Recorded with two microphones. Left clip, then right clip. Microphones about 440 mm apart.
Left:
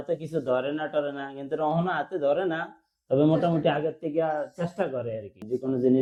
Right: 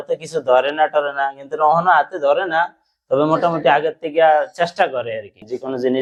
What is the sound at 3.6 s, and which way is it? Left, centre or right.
Speech, right.